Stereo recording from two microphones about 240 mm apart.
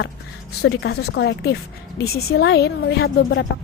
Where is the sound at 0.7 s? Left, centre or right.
Left.